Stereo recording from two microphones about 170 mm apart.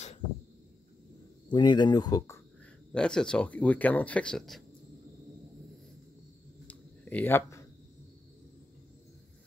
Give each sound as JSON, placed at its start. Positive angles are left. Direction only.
{"t": 1.5, "sound": "speech", "side_deg": 25}
{"t": 2.9, "sound": "speech", "side_deg": 5}
{"t": 6.7, "sound": "a sound", "side_deg": 10}